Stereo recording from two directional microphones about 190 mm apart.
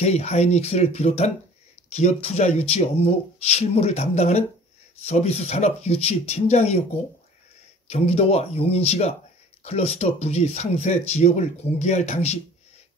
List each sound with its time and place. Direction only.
0.0 s speech: 35° left (ahead or behind)
7.9 s speech: 35° left (ahead or behind)